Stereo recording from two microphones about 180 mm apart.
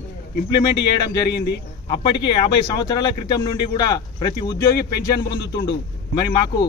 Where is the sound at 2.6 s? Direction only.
20° left (ahead or behind).